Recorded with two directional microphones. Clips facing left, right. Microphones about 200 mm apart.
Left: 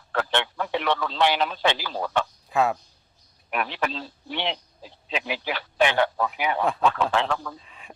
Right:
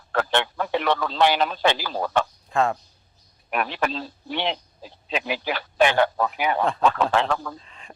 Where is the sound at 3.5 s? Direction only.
45° right (ahead or behind).